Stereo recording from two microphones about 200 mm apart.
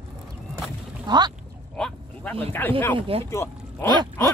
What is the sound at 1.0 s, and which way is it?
Speech, 20° right (ahead or behind).